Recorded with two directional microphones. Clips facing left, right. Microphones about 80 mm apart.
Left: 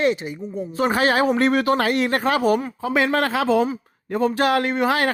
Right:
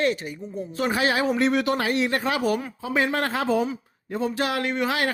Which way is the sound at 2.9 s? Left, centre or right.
Left.